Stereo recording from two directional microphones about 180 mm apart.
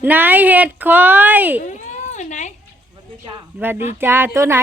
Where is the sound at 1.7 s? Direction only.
40° left (ahead or behind).